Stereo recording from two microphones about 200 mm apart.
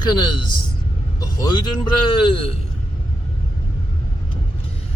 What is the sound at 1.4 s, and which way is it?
Speech, 20° left (ahead or behind).